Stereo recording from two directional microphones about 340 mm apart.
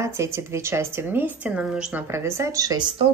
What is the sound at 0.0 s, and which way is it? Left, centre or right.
Speech, centre.